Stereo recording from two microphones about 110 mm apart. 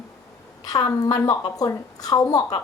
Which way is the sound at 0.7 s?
35° left (ahead or behind).